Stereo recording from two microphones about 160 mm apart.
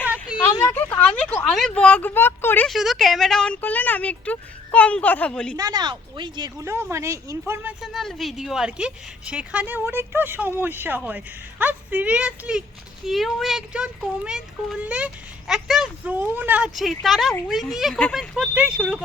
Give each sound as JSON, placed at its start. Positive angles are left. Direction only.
{"t": 0.0, "sound": "a sound", "side_deg": -10}
{"t": 0.6, "sound": "speech", "side_deg": 10}
{"t": 1.5, "sound": "speech", "side_deg": 0}
{"t": 2.6, "sound": "speech", "side_deg": 0}
{"t": 5.5, "sound": "speech", "side_deg": -25}
{"t": 7.8, "sound": "a woman's voice", "side_deg": 0}